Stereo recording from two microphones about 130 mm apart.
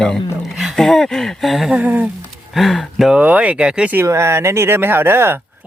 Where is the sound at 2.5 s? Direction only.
Centre (ahead or behind); by 5.3 s 15° right (ahead or behind).